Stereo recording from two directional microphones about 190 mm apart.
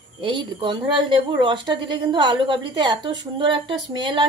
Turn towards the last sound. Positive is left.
turn(degrees=-25)  # may be behind; listen again after turning